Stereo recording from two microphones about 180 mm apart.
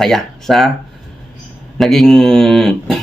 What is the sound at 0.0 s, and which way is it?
Speech, centre (ahead or behind).